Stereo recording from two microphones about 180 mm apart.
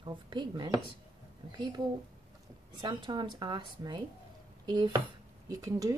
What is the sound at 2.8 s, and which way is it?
A woman's voice, 25° right (ahead or behind).